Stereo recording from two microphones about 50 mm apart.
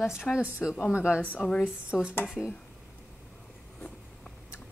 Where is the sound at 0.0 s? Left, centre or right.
Centre.